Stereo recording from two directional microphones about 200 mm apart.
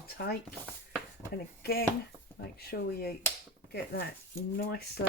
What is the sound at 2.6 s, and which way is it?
Speech, 50° left (ahead or behind).